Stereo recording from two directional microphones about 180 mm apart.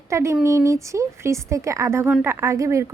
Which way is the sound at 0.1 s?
15° right (ahead or behind).